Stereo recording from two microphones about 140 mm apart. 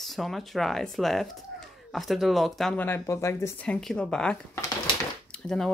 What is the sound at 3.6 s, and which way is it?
Speech, 5° left (ahead or behind).